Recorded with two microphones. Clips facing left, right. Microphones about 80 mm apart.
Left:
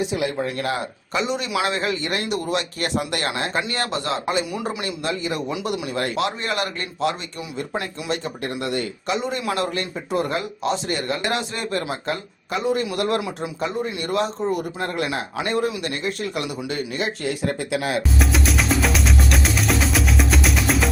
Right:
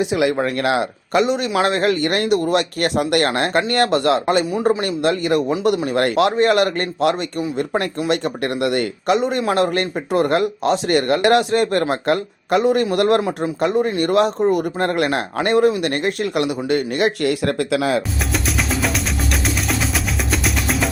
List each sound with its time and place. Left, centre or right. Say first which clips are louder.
0.0 s speech: right 6 dB; right
4.5 s speech: right 10 dB; right
4.8 s speech: right 7 dB; right
9.4 s speech: right 7 dB; right
9.7 s speech: right 6 dB; right
13.6 s speech: right 9 dB; right
18.2 s music: left 1 dB; centre